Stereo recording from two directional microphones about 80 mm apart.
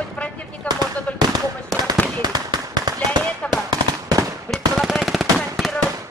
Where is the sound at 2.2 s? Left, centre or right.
Right.